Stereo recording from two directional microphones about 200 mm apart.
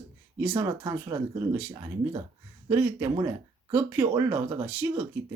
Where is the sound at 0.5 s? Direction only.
20° right (ahead or behind).